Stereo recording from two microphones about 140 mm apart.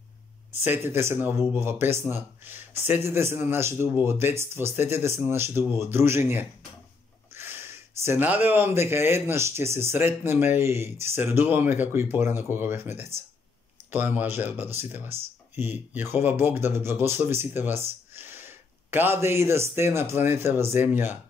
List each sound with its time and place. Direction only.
0.7 s speech: 15° right (ahead or behind)